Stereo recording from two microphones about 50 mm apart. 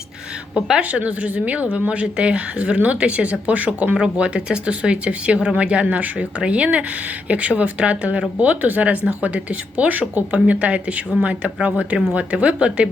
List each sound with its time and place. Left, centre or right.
0.5 s a woman's voice: right
3.9 s a woman's voice: centre